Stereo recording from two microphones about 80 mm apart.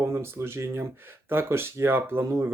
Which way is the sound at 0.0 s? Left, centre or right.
Right.